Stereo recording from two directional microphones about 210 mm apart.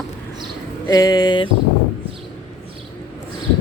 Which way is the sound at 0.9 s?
20° left (ahead or behind).